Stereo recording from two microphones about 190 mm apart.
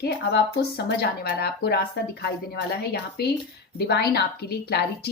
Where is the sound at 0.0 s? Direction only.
60° left (ahead or behind).